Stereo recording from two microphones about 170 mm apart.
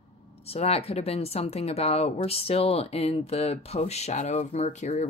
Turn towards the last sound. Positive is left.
turn(degrees=45)  # may be behind; listen again after turning